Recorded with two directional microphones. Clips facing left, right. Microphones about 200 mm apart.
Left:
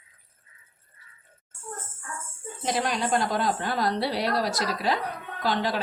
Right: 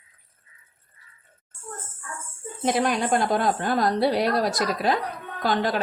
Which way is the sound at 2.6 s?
55° right (ahead or behind).